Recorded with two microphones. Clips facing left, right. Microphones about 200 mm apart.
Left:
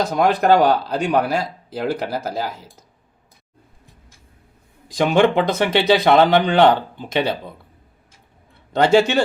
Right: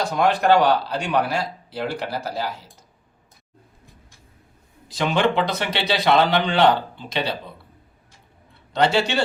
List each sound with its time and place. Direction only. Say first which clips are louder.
0.2 s speech: left 2 dB; 45° left (ahead or behind)
4.9 s speech: left 5 dB; 50° left (ahead or behind)
8.7 s speech: left 5 dB; 50° left (ahead or behind)